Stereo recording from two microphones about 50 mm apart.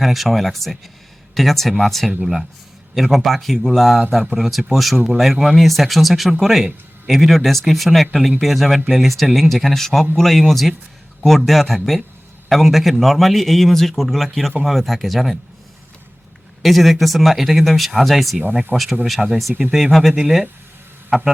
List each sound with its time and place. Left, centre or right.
0.0 s a man's voice: centre
16.6 s a man's voice: centre
18.7 s speech: right
19.0 s a man's voice: centre